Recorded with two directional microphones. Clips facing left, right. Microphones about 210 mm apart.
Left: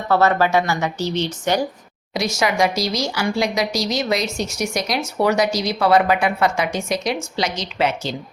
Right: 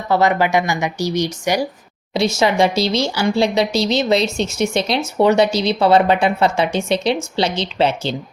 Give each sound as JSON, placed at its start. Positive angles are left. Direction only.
{"t": 0.1, "sound": "speech", "side_deg": -15}
{"t": 2.1, "sound": "speech", "side_deg": -25}